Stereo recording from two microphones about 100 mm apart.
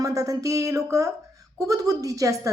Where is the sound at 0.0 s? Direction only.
35° right (ahead or behind).